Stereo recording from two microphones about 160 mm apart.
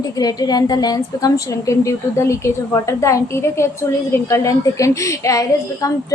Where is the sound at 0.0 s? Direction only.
25° left (ahead or behind).